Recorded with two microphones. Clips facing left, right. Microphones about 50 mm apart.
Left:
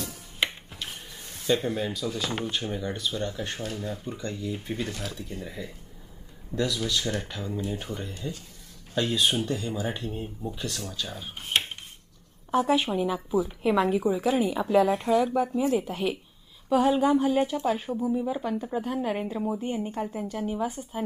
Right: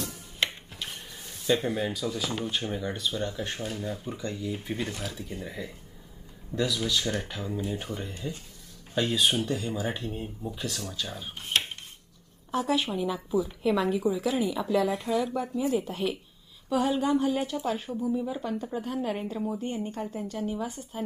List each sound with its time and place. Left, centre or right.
0.4 s music: centre
0.8 s rub: centre
1.8 s speech: centre
11.3 s speech: centre
12.5 s a woman's voice: left
16.7 s speech: centre
17.8 s speech: centre